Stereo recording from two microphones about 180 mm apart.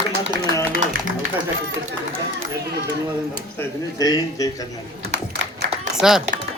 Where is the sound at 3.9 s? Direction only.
20° left (ahead or behind).